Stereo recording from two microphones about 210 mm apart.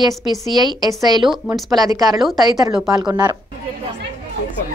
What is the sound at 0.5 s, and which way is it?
Speech, 20° right (ahead or behind).